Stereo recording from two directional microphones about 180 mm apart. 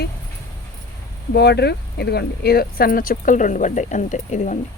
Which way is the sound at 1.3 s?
65° left (ahead or behind).